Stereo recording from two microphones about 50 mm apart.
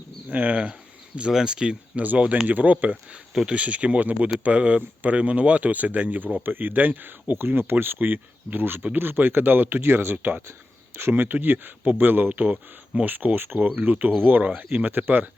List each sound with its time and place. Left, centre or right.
0.3 s speech: right
1.3 s speech: centre
2.0 s speech: right
7.3 s speech: right
13.7 s speech: right